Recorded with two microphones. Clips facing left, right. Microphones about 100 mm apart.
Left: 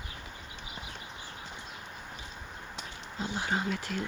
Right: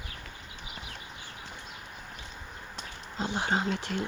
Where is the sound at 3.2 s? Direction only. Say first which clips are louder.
Right 3 dB; 70° right (ahead or behind).